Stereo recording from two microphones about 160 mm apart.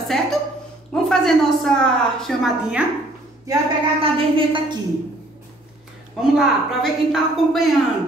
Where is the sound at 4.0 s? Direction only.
35° right (ahead or behind).